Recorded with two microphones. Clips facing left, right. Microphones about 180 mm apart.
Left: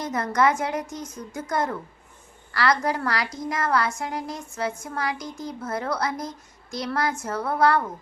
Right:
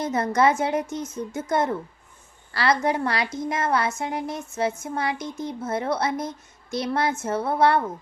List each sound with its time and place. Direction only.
0.0 s speech: 25° right (ahead or behind)